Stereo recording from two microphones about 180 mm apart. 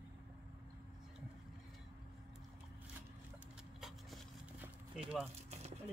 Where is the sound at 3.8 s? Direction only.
Centre (ahead or behind).